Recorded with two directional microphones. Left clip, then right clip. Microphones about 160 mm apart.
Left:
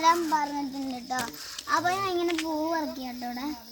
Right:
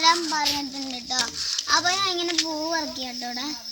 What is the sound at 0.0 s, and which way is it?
A child's voice, 10° left (ahead or behind).